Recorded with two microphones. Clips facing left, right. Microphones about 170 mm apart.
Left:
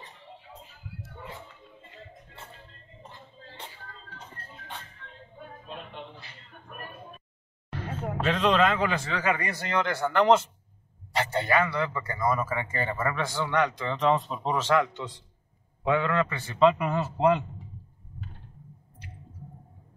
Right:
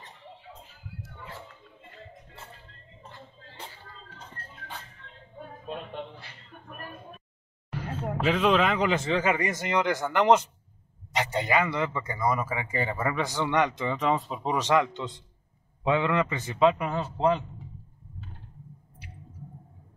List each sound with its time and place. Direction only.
8.2 s a man's voice: 10° right (ahead or behind)
13.9 s a man's voice: 5° right (ahead or behind)
16.5 s speech: centre (ahead or behind)